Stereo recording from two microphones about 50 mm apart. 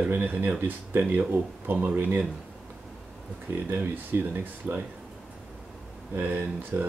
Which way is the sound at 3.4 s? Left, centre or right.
Right.